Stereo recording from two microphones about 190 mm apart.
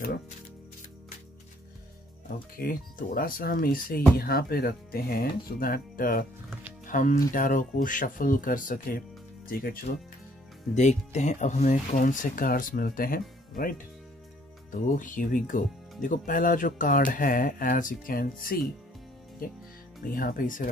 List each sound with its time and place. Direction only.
2.2 s speech: 50° left (ahead or behind)
10.7 s speech: 40° left (ahead or behind)
20.2 s speech: 50° left (ahead or behind)